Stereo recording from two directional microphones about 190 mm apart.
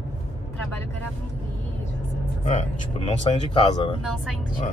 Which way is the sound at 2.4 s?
40° left (ahead or behind).